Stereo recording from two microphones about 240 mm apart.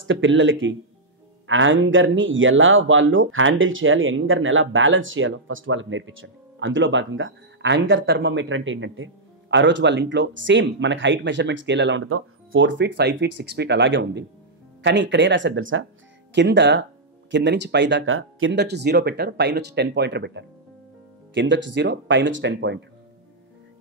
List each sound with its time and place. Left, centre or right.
0.0 s speech: right